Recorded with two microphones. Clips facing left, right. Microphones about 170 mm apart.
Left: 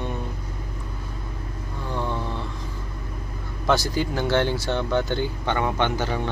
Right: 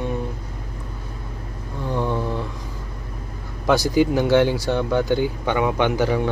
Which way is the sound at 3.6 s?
15° right (ahead or behind).